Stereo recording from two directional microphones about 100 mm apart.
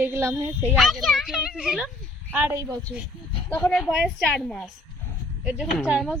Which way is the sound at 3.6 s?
5° left (ahead or behind).